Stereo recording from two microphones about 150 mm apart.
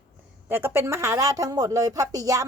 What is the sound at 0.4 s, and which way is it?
A woman's voice, 15° right (ahead or behind).